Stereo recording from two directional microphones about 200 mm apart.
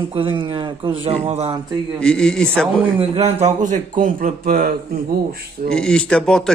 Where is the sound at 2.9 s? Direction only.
30° right (ahead or behind); by 4.7 s 45° right (ahead or behind).